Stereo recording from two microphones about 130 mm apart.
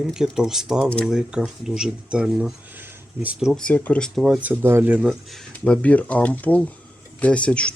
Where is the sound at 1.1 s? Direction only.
5° right (ahead or behind).